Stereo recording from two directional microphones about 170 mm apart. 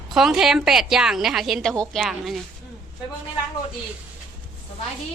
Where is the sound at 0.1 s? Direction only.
Centre (ahead or behind).